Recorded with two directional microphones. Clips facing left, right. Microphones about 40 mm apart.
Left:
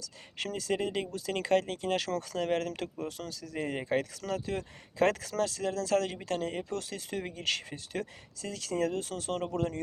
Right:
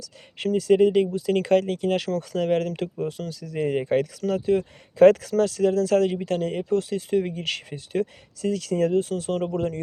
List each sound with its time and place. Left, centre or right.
0.3 s speech: right
2.7 s speech: right
3.1 s speech: right
3.5 s speech: right
8.4 s speech: right
8.7 s speech: right
9.0 s speech: right
9.5 s speech: right